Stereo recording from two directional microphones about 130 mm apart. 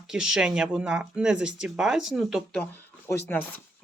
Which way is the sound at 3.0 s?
15° left (ahead or behind).